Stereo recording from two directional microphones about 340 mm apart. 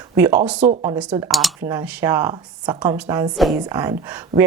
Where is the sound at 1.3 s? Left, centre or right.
Centre.